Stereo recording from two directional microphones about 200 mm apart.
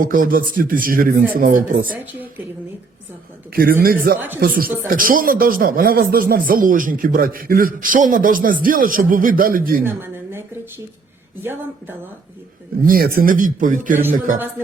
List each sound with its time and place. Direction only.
0.0 s speech: 45° right (ahead or behind)
3.5 s speech: 50° right (ahead or behind)
9.8 s a sound: 10° right (ahead or behind)
12.8 s speech: 45° right (ahead or behind)